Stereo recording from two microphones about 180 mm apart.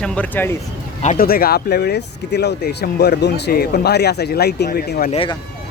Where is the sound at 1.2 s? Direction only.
55° left (ahead or behind).